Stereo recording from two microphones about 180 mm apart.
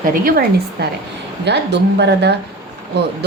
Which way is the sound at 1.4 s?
70° right (ahead or behind).